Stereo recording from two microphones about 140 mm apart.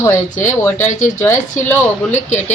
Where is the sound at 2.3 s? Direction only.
55° left (ahead or behind).